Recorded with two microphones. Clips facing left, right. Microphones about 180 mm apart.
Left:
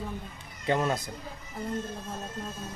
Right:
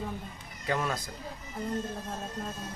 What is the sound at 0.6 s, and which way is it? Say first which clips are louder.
Speech: left 4 dB; 25° left (ahead or behind).